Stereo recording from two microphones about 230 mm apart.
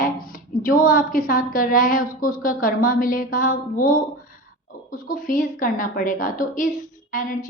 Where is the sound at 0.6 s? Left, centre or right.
Left.